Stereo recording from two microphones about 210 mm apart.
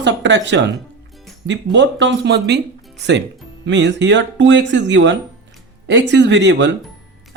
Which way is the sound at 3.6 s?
55° right (ahead or behind).